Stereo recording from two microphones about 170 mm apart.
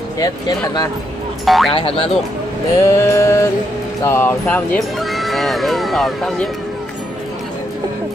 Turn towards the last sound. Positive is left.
turn(degrees=0)  # may be behind; listen again after turning